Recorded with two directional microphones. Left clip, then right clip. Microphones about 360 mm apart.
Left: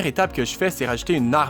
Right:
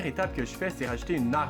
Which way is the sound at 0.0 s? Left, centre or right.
Left.